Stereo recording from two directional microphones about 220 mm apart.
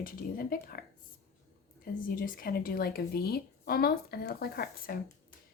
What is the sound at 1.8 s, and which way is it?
Speech, 40° left (ahead or behind).